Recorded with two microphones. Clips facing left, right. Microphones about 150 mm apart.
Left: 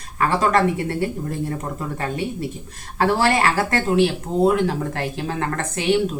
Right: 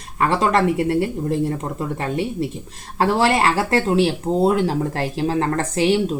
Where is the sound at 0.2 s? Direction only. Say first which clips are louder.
Right 1 dB; 25° right (ahead or behind).